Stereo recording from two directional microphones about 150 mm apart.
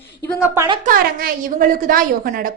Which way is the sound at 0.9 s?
65° right (ahead or behind).